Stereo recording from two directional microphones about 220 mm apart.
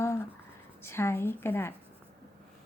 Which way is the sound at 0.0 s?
10° left (ahead or behind).